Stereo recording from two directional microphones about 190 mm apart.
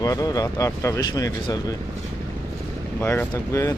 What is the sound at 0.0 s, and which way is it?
Speech, 20° left (ahead or behind).